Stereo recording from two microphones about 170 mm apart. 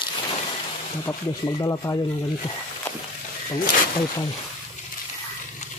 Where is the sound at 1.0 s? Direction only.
20° left (ahead or behind).